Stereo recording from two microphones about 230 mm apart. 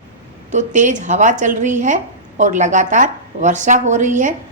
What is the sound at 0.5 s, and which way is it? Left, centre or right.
A woman's voice, right.